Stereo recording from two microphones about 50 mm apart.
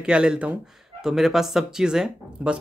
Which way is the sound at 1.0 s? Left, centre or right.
Centre.